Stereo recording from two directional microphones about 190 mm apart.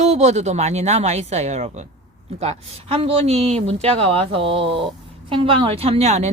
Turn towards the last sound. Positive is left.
turn(degrees=-35)  # may be behind; listen again after turning